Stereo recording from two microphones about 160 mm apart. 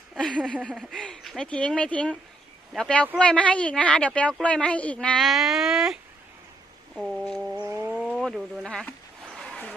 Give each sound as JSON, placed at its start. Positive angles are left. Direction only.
{"t": 0.2, "sound": "a woman's voice", "side_deg": 5}
{"t": 7.6, "sound": "a sound", "side_deg": -20}
{"t": 7.9, "sound": "speech", "side_deg": 0}
{"t": 9.3, "sound": "vehicle", "side_deg": 0}